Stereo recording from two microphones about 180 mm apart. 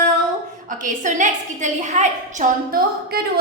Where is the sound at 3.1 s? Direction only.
60° right (ahead or behind).